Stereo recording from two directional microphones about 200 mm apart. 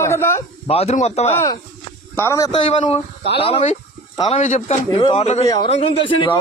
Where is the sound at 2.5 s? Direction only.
30° left (ahead or behind).